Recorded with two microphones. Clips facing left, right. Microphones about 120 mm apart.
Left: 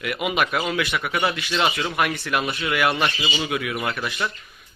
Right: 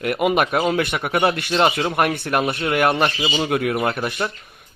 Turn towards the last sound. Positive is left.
turn(degrees=-40)  # may be behind; listen again after turning